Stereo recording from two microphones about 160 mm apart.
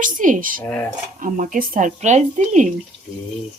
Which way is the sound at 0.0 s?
55° right (ahead or behind).